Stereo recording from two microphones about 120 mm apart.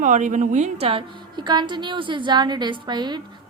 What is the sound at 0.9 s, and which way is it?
A woman's voice, 45° right (ahead or behind).